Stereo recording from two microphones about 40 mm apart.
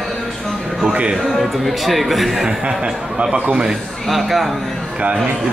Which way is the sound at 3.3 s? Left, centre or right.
Right.